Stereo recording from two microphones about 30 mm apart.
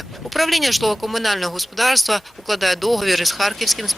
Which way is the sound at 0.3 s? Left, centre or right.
Centre.